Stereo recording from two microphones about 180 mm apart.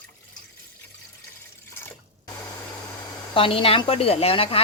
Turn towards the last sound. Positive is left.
turn(degrees=30)  # may be behind; listen again after turning